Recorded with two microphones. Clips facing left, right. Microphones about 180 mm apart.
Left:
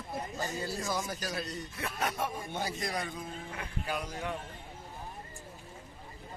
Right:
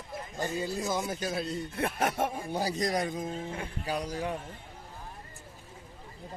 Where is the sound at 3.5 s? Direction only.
30° right (ahead or behind).